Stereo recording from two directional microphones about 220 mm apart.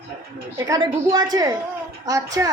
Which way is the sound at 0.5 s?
15° right (ahead or behind).